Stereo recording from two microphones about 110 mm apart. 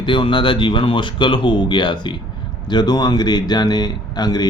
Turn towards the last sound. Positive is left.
turn(degrees=40)  # may be behind; listen again after turning